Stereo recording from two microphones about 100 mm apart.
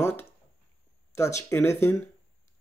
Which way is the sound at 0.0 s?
20° left (ahead or behind).